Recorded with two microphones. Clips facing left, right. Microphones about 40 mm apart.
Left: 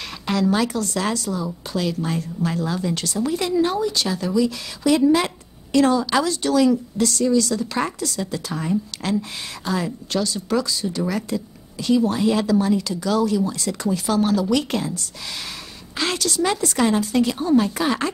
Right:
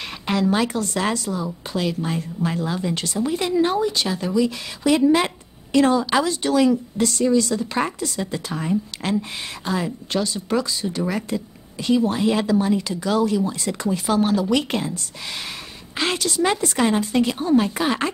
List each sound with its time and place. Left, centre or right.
0.0 s a woman's voice: right